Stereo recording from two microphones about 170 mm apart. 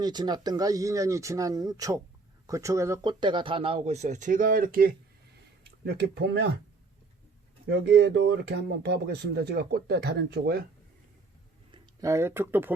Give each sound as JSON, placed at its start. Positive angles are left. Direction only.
{"t": 0.0, "sound": "speech", "side_deg": -25}
{"t": 5.8, "sound": "speech", "side_deg": -75}
{"t": 7.7, "sound": "speech", "side_deg": -90}
{"t": 11.7, "sound": "speech", "side_deg": -20}